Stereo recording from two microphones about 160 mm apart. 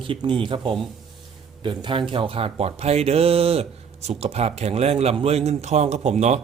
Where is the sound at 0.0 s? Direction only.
30° right (ahead or behind).